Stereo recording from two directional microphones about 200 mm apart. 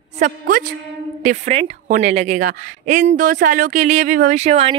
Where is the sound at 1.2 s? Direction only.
35° right (ahead or behind).